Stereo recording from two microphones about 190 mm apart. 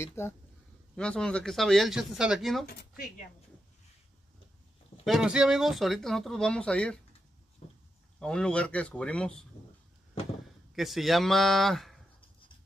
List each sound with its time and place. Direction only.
0.0 s speech: 15° left (ahead or behind)
2.6 s speech: 55° left (ahead or behind)
5.0 s speech: centre (ahead or behind)
8.2 s speech: 5° left (ahead or behind)
10.7 s speech: centre (ahead or behind)